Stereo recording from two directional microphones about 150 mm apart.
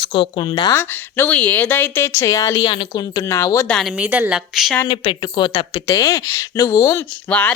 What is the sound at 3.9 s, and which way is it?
Speech, 10° right (ahead or behind).